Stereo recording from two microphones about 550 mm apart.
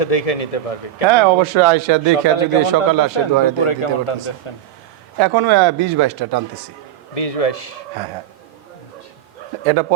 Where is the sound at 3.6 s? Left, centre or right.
Left.